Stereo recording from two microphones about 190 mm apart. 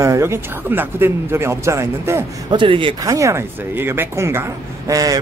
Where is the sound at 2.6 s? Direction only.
25° right (ahead or behind).